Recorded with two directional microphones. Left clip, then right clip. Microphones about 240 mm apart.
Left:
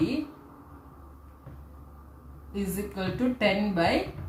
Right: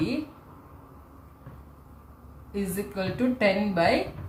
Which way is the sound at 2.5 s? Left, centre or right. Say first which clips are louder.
Right 2 dB; centre.